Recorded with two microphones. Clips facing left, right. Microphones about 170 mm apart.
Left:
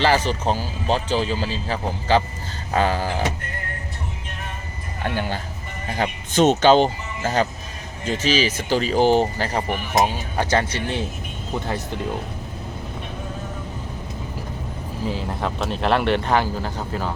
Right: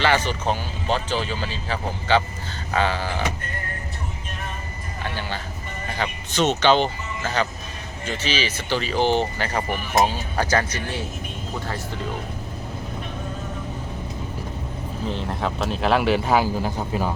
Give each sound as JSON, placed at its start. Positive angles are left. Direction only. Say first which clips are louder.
{"t": 0.0, "sound": "speech", "louder": "left 2 dB", "side_deg": 35}
{"t": 5.0, "sound": "speech", "louder": "left 5 dB", "side_deg": 50}
{"t": 9.6, "sound": "speech", "louder": "right 1 dB", "side_deg": 20}
{"t": 15.0, "sound": "speech", "louder": "left 1 dB", "side_deg": 5}